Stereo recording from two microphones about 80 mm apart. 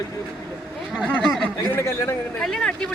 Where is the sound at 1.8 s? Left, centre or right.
Left.